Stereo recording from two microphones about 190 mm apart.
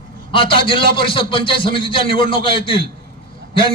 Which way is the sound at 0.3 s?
25° left (ahead or behind).